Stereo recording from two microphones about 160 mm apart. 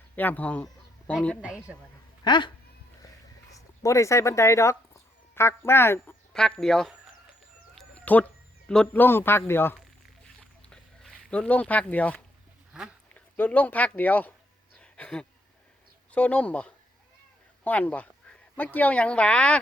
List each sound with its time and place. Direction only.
0.2 s speech: 10° left (ahead or behind)
1.4 s speech: 5° right (ahead or behind)
2.2 s speech: 30° left (ahead or behind)
3.5 s speech: 20° left (ahead or behind)
6.3 s a man's voice: 5° left (ahead or behind)
10.7 s a sound: 5° left (ahead or behind)
12.7 s speech: 5° right (ahead or behind)
13.1 s speech: 10° left (ahead or behind)
14.8 s a sound: 5° left (ahead or behind)
16.1 s speech: 10° left (ahead or behind)